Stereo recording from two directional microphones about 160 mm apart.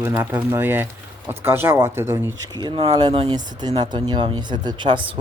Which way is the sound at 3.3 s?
25° right (ahead or behind).